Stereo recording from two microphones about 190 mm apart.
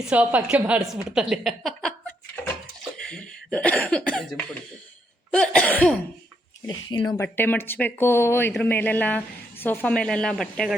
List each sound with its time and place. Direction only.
0.0 s a woman's voice: 5° right (ahead or behind)
3.1 s a woman's voice: 5° left (ahead or behind)
6.7 s speech: 20° left (ahead or behind)
7.2 s speech: 10° left (ahead or behind)